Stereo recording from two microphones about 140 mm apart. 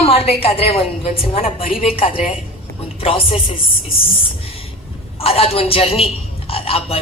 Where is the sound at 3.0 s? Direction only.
40° left (ahead or behind).